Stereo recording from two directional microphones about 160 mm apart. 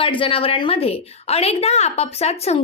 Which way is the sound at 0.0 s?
35° left (ahead or behind).